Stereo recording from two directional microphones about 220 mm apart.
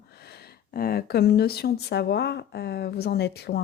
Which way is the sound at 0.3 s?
45° left (ahead or behind).